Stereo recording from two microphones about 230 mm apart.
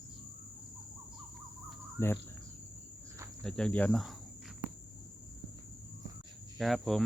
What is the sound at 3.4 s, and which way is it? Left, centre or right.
Speech, centre.